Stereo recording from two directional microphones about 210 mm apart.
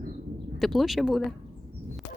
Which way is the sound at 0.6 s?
Centre (ahead or behind).